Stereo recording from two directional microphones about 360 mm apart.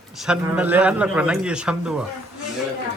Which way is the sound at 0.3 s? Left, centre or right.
Centre.